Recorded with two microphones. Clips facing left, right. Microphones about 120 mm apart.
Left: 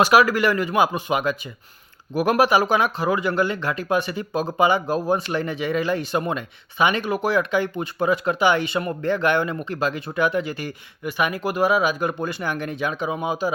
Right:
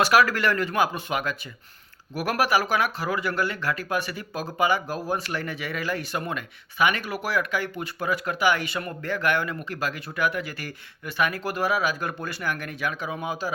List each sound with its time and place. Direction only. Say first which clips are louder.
0.0 s speech: left 4 dB; 15° left (ahead or behind)